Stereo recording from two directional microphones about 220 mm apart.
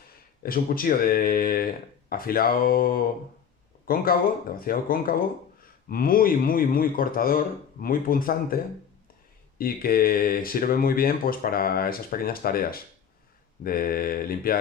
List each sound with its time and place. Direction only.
0.4 s speech: 40° left (ahead or behind)
9.6 s speech: 40° left (ahead or behind)